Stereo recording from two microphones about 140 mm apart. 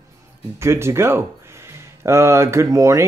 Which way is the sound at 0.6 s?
20° right (ahead or behind).